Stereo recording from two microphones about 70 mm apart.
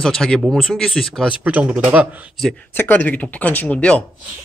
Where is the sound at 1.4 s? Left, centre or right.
Right.